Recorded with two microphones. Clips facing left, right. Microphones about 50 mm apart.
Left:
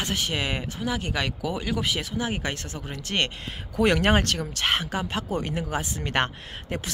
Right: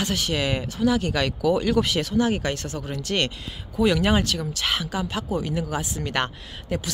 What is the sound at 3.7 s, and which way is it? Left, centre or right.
Speech, left.